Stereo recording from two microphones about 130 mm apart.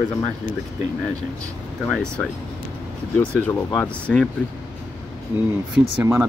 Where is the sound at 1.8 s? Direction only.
5° left (ahead or behind).